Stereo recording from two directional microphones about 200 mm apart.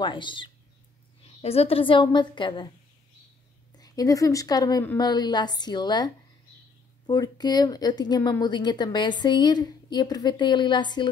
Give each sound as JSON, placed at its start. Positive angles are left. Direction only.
{"t": 0.0, "sound": "speech", "side_deg": 25}
{"t": 3.7, "sound": "speech", "side_deg": 20}